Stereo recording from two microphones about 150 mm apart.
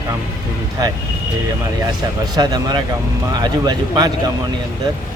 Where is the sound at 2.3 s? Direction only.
25° right (ahead or behind).